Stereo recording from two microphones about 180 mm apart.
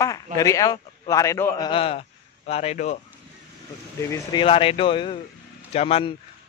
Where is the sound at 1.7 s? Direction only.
30° left (ahead or behind).